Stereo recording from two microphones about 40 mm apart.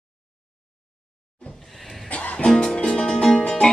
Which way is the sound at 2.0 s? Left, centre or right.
Left.